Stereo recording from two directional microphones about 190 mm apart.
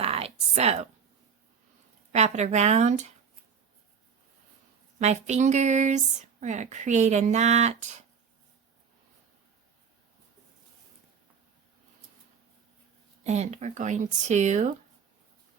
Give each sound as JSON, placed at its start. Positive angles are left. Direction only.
{"t": 0.0, "sound": "a sound", "side_deg": -30}
{"t": 2.1, "sound": "speech", "side_deg": -35}
{"t": 4.9, "sound": "speech", "side_deg": -35}
{"t": 13.2, "sound": "speech", "side_deg": -35}